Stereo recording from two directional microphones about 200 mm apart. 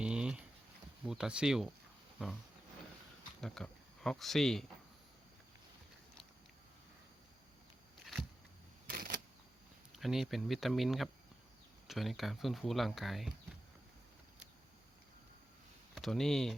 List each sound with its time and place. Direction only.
0.0 s a sound: 5° right (ahead or behind)
1.0 s speech: 5° right (ahead or behind)
3.4 s speech: centre (ahead or behind)
8.9 s a sound: 45° right (ahead or behind)
10.0 s speech: centre (ahead or behind)
16.0 s speech: centre (ahead or behind)